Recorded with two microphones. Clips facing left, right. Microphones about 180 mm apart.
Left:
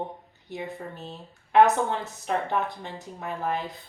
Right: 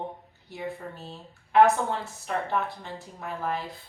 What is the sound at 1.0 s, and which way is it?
A woman's voice, 20° left (ahead or behind).